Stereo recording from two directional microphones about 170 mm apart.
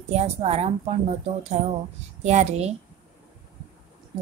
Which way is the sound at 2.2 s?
40° right (ahead or behind).